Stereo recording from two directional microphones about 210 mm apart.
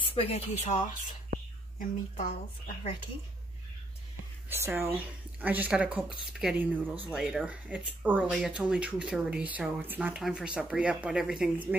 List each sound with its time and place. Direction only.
0.0 s speech: 25° left (ahead or behind)
4.5 s speech: 10° right (ahead or behind)